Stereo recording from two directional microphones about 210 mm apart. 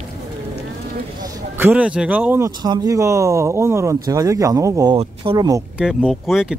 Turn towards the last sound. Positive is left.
turn(degrees=-5)  # may be behind; listen again after turning